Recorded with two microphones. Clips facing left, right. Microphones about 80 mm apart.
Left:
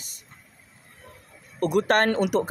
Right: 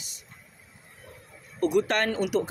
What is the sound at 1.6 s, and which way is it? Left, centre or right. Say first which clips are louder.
Speech: left 3 dB; left.